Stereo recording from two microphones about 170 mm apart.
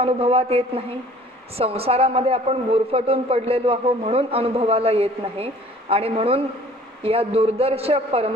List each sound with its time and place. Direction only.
0.0 s a man's voice: 35° right (ahead or behind)